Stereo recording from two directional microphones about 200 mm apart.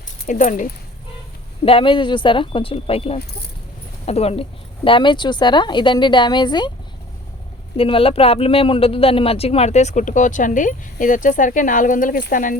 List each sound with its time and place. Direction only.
0.3 s speech: 40° left (ahead or behind)
1.6 s a woman's voice: 25° left (ahead or behind)
7.8 s speech: 30° left (ahead or behind)